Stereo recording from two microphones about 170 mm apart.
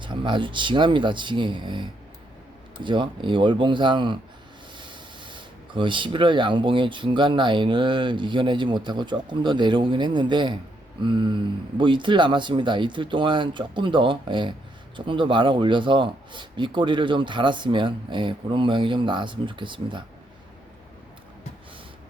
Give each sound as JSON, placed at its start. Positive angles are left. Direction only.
{"t": 0.0, "sound": "speech", "side_deg": -30}